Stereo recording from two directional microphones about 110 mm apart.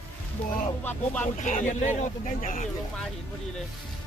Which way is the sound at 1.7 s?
90° left.